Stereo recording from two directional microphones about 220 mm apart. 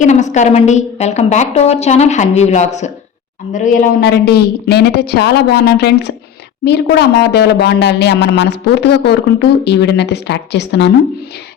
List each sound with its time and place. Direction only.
0.0 s a woman's voice: 35° left (ahead or behind); by 10.9 s 50° left (ahead or behind)